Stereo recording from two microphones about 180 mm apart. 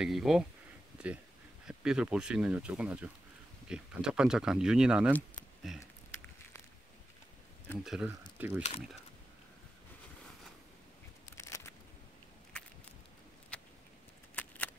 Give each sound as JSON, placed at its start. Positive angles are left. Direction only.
{"t": 0.0, "sound": "speech", "side_deg": 0}
{"t": 5.8, "sound": "a sound", "side_deg": 15}
{"t": 7.8, "sound": "speech", "side_deg": 0}
{"t": 11.3, "sound": "a sound", "side_deg": 15}
{"t": 13.5, "sound": "vehicle", "side_deg": 5}
{"t": 14.3, "sound": "keys jangling", "side_deg": 10}